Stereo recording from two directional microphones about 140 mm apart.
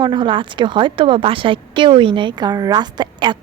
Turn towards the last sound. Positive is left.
turn(degrees=-30)  # may be behind; listen again after turning